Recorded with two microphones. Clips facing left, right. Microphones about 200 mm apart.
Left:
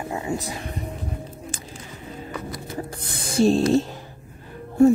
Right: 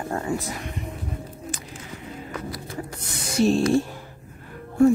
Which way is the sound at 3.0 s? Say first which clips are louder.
Left 2 dB; 30° left (ahead or behind).